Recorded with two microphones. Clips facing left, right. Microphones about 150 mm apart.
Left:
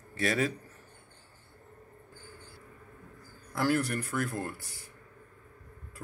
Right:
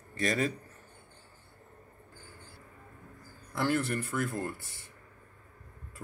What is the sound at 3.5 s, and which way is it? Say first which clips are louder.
A man's voice: left 1 dB; 5° left (ahead or behind).